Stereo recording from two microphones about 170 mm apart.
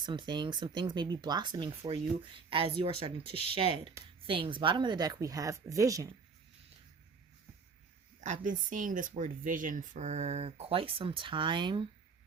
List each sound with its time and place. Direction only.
0.0 s speech: 25° right (ahead or behind)
8.2 s speech: 45° right (ahead or behind); by 11.9 s 30° right (ahead or behind)